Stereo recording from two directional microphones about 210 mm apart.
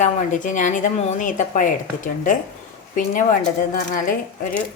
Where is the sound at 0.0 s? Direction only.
35° left (ahead or behind).